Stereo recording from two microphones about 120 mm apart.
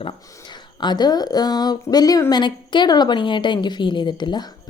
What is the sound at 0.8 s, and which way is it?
A woman's voice, 35° left (ahead or behind).